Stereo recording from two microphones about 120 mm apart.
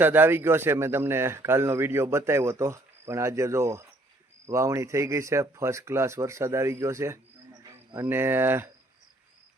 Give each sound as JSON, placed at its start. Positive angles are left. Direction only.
{"t": 0.0, "sound": "speech", "side_deg": -15}